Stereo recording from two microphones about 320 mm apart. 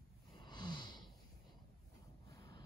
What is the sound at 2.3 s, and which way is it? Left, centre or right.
Vehicle, centre.